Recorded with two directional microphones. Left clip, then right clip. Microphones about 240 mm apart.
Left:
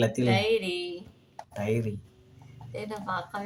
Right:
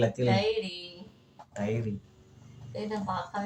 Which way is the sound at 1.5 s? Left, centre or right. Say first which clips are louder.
Left 3 dB; left.